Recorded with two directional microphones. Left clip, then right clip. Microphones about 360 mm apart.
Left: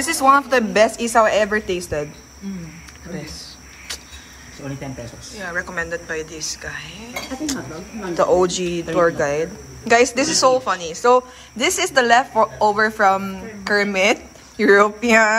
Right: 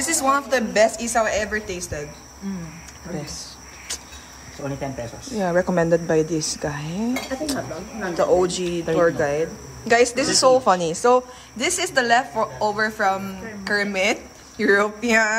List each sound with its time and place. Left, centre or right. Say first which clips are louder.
0.0 s speech: left 6 dB; centre
3.2 s a sound: even; centre
5.3 s a woman's voice: right 5 dB; centre
8.1 s speech: left 3 dB; centre